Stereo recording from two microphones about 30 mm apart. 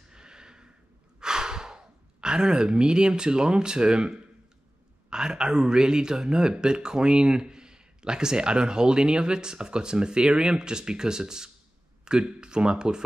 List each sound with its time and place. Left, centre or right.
0.1 s a sound: right
1.2 s sigh: right
2.2 s a man's voice: right